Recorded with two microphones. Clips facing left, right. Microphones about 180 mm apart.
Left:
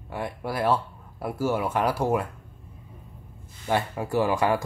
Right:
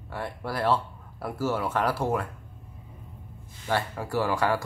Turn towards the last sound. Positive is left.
turn(degrees=15)  # may be behind; listen again after turning